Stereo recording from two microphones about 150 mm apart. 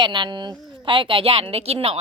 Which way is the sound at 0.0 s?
30° right (ahead or behind).